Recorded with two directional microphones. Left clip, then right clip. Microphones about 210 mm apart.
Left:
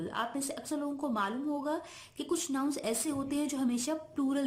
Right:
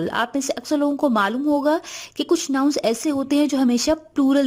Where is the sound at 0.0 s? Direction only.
50° right (ahead or behind).